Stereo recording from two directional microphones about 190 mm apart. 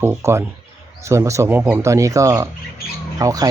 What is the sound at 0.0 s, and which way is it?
Speech, 15° right (ahead or behind).